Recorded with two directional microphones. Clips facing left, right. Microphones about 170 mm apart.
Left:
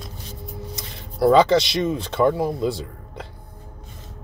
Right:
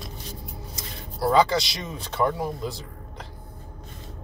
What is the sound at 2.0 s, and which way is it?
Speech, 30° left (ahead or behind).